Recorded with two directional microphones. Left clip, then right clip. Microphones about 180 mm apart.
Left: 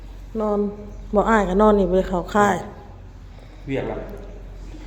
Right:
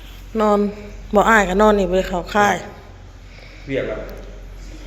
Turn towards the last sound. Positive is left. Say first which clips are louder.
# right 4 dB
turn(degrees=65)  # may be behind; listen again after turning